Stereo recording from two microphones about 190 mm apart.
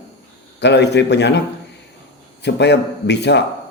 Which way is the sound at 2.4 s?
65° left (ahead or behind).